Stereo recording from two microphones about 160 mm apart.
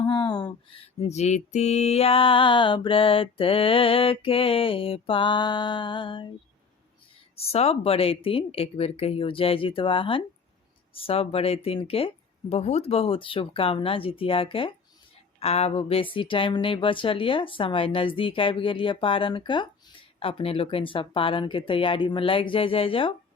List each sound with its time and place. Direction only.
0.1 s a sound: 25° left (ahead or behind)
1.0 s mantra: 45° left (ahead or behind)
7.3 s mantra: 40° left (ahead or behind)